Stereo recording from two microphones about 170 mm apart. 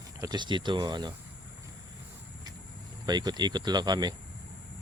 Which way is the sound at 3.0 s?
25° right (ahead or behind).